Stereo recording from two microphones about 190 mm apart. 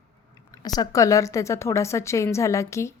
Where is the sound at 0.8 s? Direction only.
15° left (ahead or behind).